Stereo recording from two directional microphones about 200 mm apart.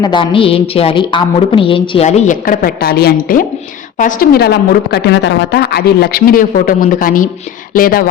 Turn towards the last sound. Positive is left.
turn(degrees=45)  # may be behind; listen again after turning